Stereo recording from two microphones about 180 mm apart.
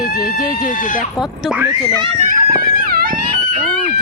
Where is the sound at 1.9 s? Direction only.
30° right (ahead or behind); by 3.6 s 55° right (ahead or behind).